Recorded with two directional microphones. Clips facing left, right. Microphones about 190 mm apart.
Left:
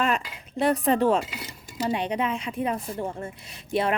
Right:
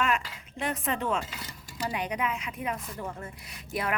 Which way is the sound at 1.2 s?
20° left (ahead or behind).